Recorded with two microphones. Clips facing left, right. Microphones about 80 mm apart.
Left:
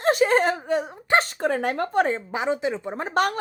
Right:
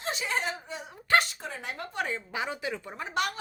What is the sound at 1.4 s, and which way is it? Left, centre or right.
Speech, left.